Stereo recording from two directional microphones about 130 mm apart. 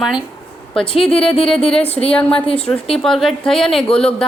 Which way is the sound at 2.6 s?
5° left (ahead or behind).